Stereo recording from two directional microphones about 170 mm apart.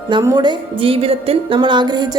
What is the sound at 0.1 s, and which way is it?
A woman's voice, 25° right (ahead or behind).